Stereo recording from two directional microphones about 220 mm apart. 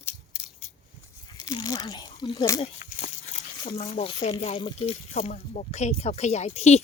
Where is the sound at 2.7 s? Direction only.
30° left (ahead or behind).